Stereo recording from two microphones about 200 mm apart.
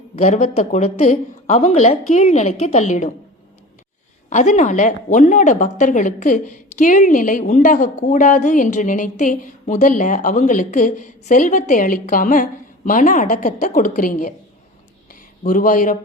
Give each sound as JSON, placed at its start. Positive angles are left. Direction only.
{"t": 0.2, "sound": "a woman's voice", "side_deg": 35}
{"t": 4.3, "sound": "a woman's voice", "side_deg": 35}
{"t": 15.4, "sound": "speech", "side_deg": 40}